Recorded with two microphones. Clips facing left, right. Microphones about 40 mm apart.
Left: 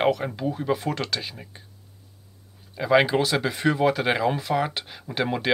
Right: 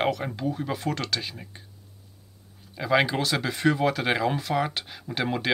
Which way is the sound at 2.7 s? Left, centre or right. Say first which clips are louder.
Left 4 dB; centre.